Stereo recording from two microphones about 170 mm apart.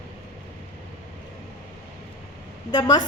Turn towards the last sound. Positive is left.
turn(degrees=25)  # may be behind; listen again after turning